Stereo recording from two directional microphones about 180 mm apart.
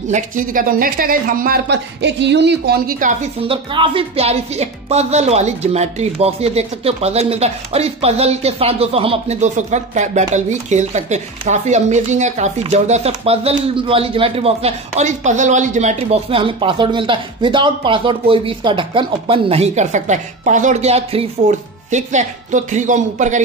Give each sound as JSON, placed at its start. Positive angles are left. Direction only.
{"t": 0.1, "sound": "a woman's voice", "side_deg": -50}
{"t": 3.4, "sound": "speech", "side_deg": -30}